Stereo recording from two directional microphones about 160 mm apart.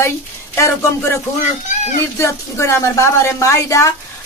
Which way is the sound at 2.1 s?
15° left (ahead or behind).